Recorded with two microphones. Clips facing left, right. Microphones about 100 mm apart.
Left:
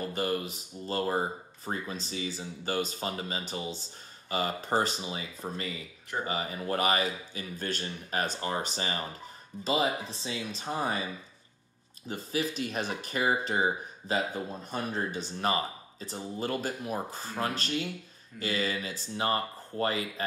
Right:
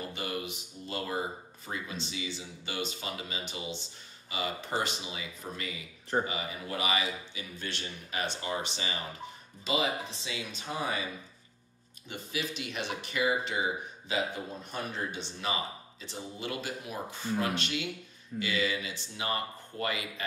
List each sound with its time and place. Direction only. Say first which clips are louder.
0.1 s speech: left 5 dB; 40° left (ahead or behind)
12.1 s speech: left 5 dB; 40° left (ahead or behind)